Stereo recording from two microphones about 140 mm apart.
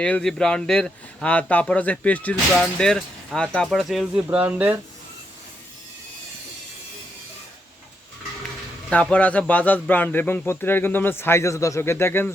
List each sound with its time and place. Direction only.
0.0 s speech: 5° left (ahead or behind); by 4.8 s 10° right (ahead or behind)
8.9 s speech: 10° left (ahead or behind)